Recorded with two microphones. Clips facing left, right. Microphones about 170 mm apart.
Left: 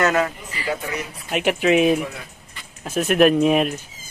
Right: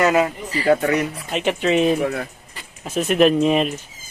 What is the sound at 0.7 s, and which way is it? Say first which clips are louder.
Speech: right 10 dB; 65° right (ahead or behind).